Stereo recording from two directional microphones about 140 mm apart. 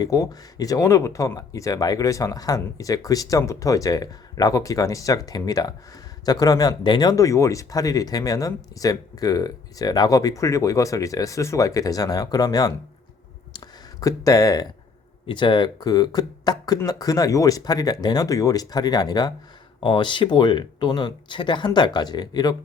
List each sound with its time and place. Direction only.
0.0 s speech: 25° left (ahead or behind)
14.0 s speech: 25° left (ahead or behind)